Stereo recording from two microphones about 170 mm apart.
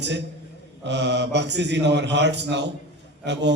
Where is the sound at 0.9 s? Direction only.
90° right.